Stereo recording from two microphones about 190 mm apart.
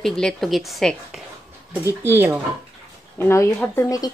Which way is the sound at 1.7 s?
15° right (ahead or behind).